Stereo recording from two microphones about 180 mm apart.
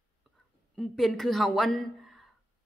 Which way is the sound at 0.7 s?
Centre (ahead or behind).